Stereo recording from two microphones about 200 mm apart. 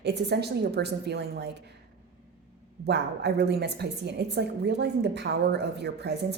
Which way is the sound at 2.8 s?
55° right (ahead or behind).